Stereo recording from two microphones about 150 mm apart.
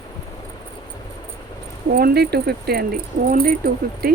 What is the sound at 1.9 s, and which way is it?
Speech, 90° right.